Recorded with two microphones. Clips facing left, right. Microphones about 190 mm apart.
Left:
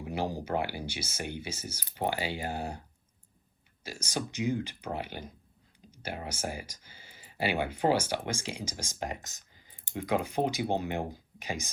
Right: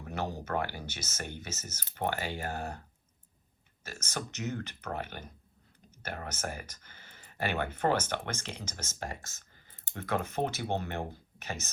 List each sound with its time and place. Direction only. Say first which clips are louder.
0.0 s speech: left 3 dB; 10° left (ahead or behind)
3.8 s speech: left 4 dB; 10° left (ahead or behind)